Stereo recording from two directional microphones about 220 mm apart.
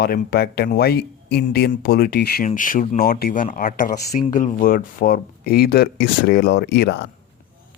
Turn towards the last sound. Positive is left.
turn(degrees=50)  # may be behind; listen again after turning